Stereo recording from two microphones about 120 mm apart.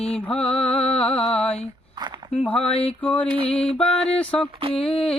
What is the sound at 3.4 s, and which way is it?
Music, 55° left (ahead or behind).